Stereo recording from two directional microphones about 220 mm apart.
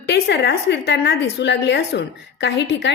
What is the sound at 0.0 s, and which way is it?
A woman's voice, 50° left (ahead or behind).